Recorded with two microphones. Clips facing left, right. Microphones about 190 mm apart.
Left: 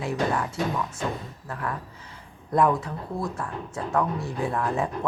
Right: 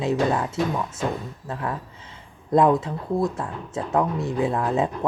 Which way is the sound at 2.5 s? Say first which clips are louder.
Right 4 dB; 20° right (ahead or behind).